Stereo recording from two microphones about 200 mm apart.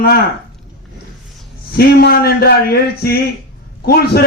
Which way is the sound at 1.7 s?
50° left (ahead or behind).